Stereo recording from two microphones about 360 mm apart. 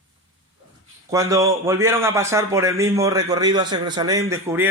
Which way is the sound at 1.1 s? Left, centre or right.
Centre.